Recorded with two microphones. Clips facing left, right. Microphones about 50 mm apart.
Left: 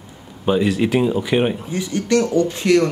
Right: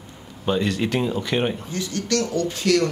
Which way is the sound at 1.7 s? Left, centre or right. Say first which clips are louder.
Left 6 dB; left.